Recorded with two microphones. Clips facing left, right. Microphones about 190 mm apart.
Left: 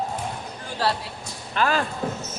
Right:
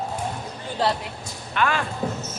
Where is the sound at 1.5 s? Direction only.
35° left (ahead or behind).